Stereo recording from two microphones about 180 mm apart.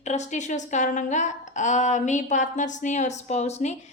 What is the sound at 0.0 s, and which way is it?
A woman's voice, 40° left (ahead or behind).